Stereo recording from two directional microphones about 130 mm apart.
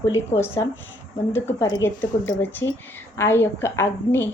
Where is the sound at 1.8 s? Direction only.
15° left (ahead or behind).